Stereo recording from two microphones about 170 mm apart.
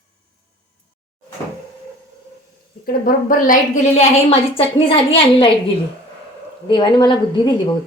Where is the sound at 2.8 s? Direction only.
60° left (ahead or behind); by 4.3 s 45° left (ahead or behind).